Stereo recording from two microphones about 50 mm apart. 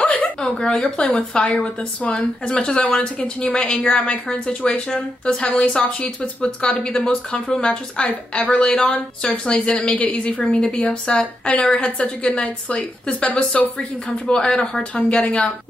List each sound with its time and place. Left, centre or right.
0.0 s a sound: left
0.4 s speech: centre
15.2 s speech: left